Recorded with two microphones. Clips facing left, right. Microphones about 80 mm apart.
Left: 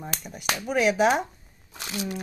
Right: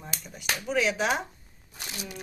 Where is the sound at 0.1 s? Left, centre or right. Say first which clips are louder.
Left 4 dB; left.